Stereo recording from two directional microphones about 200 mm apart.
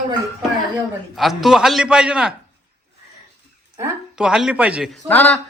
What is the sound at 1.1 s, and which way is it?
A man's voice, centre (ahead or behind).